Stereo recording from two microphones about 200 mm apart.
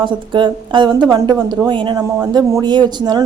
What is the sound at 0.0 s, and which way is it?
A woman's voice, 25° right (ahead or behind).